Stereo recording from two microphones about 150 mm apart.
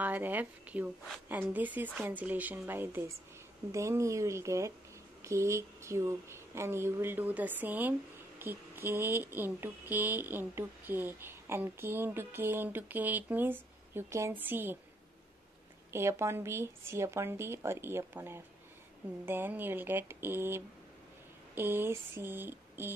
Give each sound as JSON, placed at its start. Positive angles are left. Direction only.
{"t": 0.0, "sound": "speech", "side_deg": -10}
{"t": 15.9, "sound": "speech", "side_deg": -20}